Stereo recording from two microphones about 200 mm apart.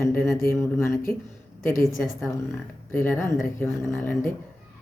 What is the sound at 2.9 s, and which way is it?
Speech, 10° left (ahead or behind).